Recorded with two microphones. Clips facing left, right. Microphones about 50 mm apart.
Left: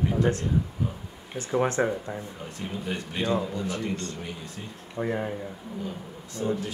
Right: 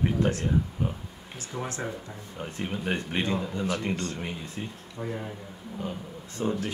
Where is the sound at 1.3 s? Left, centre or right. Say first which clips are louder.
Left 10 dB; left.